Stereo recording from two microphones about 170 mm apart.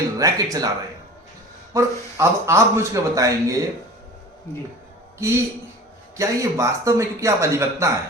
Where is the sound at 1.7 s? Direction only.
15° right (ahead or behind).